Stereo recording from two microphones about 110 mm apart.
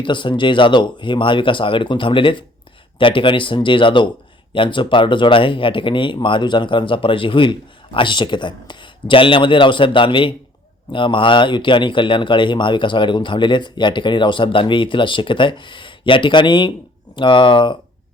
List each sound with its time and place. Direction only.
0.0 s speech: 45° left (ahead or behind)